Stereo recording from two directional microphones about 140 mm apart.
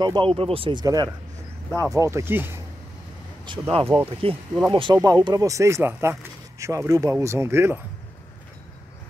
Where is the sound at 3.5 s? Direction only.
35° right (ahead or behind).